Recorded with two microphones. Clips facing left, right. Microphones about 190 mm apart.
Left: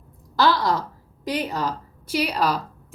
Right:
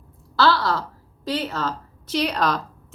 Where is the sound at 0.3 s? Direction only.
15° left (ahead or behind).